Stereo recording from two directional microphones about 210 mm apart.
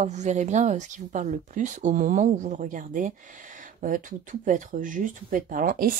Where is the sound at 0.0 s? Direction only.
35° right (ahead or behind).